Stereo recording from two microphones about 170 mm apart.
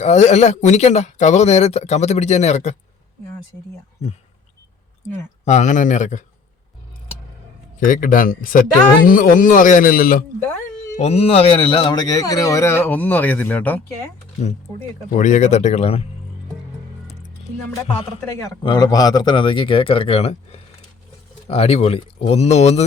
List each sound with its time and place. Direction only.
0.0 s speech: 40° left (ahead or behind)
5.5 s speech: 45° left (ahead or behind)
7.9 s a man's voice: 55° left (ahead or behind)
10.9 s a man's voice: 40° left (ahead or behind); by 14.1 s 10° left (ahead or behind)
15.1 s speech: 45° left (ahead or behind)
18.6 s a man's voice: 25° left (ahead or behind); by 22.8 s 40° left (ahead or behind)